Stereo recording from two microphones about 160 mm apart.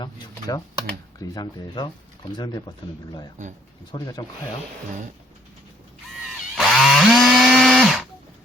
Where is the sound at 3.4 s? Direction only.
50° right (ahead or behind).